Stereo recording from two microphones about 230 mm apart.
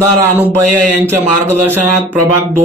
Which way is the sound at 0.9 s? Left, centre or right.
Centre.